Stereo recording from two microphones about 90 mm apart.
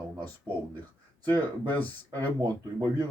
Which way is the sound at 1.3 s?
50° right (ahead or behind).